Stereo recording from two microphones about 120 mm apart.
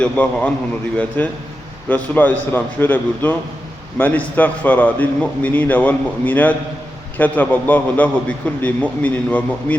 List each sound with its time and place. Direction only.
0.0 s a man's voice: 10° left (ahead or behind)